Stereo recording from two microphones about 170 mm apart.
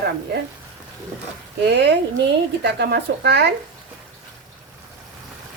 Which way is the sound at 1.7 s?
80° right.